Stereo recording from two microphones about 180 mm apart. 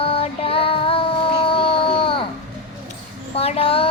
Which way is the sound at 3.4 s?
35° left (ahead or behind).